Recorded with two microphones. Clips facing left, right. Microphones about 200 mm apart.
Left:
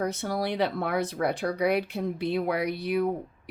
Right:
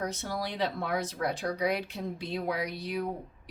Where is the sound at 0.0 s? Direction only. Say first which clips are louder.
Left 5 dB; 60° left (ahead or behind).